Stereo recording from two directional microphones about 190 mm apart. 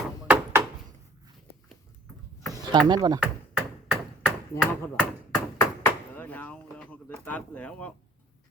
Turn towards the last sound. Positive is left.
turn(degrees=5)  # may be behind; listen again after turning